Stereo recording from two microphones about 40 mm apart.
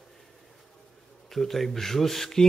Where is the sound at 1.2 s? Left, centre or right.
Centre.